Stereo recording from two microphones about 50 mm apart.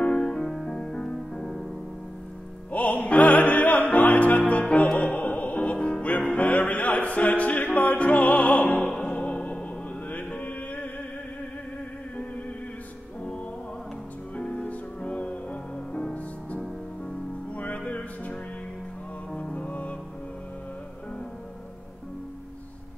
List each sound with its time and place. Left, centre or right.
0.2 s music: centre
2.7 s music: left
7.6 s opera: left
8.9 s music: centre
14.3 s music: left